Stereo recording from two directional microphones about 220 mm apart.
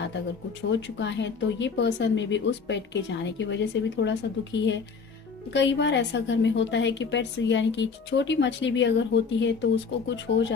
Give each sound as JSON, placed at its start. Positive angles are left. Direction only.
{"t": 0.6, "sound": "a woman's voice", "side_deg": 55}